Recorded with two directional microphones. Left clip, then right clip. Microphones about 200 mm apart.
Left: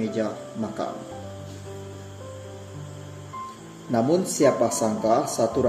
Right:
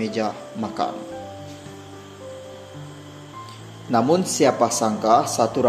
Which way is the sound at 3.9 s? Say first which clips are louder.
Right 4 dB; 15° right (ahead or behind).